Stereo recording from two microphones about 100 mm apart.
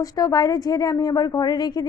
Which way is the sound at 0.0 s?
35° left (ahead or behind).